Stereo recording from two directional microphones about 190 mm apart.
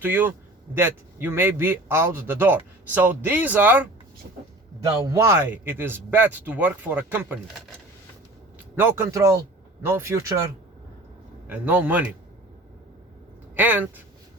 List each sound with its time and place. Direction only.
0.0 s a man's voice: 10° right (ahead or behind)
4.9 s a man's voice: 15° right (ahead or behind)
8.7 s a man's voice: 15° right (ahead or behind)
11.4 s a man's voice: 5° right (ahead or behind)
13.6 s a man's voice: 10° right (ahead or behind)